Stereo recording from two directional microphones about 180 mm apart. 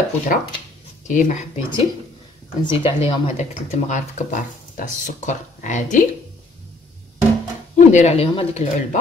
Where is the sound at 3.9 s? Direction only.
45° left (ahead or behind).